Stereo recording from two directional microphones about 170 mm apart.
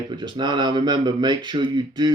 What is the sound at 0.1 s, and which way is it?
Speech, 25° right (ahead or behind).